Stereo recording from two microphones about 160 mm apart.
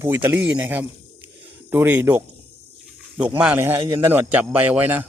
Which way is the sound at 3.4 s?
10° right (ahead or behind).